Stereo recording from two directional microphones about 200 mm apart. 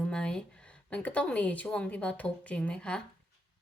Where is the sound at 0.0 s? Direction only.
5° left (ahead or behind).